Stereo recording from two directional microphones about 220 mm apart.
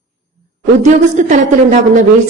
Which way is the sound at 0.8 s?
35° right (ahead or behind).